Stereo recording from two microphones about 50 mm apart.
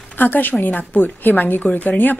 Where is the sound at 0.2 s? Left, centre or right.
Left.